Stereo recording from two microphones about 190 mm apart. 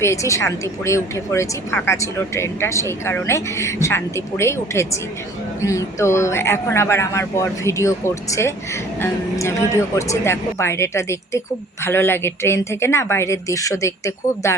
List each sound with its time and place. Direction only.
0.0 s speech: 15° left (ahead or behind)